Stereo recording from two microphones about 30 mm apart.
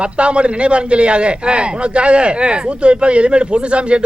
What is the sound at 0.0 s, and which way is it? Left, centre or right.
A man's voice, right.